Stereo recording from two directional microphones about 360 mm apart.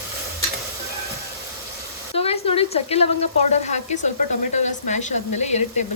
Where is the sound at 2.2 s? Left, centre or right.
Centre.